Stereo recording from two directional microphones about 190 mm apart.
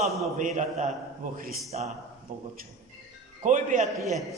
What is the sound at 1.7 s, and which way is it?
Speech, 35° right (ahead or behind).